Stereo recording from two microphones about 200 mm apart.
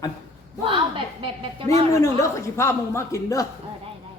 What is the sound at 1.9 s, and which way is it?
Speech, 15° left (ahead or behind).